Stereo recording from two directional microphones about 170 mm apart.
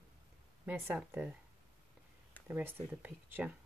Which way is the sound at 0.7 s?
10° right (ahead or behind).